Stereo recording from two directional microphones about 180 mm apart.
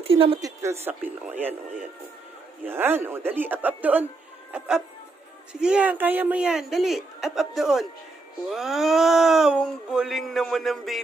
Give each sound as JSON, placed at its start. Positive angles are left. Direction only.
{"t": 0.1, "sound": "a woman's voice", "side_deg": -30}
{"t": 0.4, "sound": "speech", "side_deg": -15}